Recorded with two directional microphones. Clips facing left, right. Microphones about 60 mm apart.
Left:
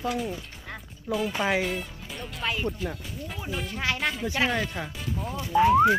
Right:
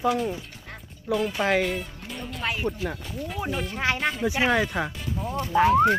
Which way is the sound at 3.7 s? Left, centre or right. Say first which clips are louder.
Right 2 dB; right.